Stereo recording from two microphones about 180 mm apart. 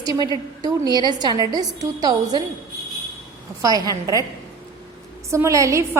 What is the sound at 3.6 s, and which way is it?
Speech, 20° right (ahead or behind).